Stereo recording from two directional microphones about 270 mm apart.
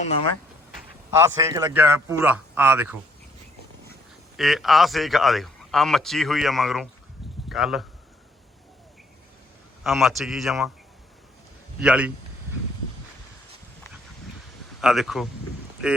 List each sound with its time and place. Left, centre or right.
0.0 s speech: left
1.1 s a man's voice: centre
4.4 s speech: centre
9.8 s speech: centre
11.8 s speech: centre
14.8 s speech: centre